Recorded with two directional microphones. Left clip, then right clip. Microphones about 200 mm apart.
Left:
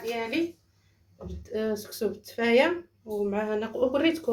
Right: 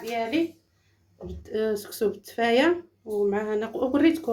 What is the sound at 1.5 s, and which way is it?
Speech, 30° right (ahead or behind).